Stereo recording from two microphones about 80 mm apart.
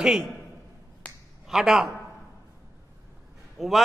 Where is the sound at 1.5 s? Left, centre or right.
Centre.